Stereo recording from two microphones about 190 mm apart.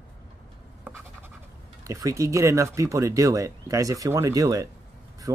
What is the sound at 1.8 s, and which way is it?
Speech, 15° right (ahead or behind).